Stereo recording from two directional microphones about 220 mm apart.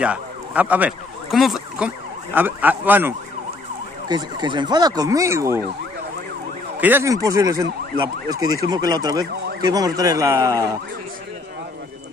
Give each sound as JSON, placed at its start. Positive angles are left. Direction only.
{"t": 0.0, "sound": "speech", "side_deg": -5}
{"t": 4.1, "sound": "speech", "side_deg": -20}
{"t": 6.8, "sound": "speech", "side_deg": -10}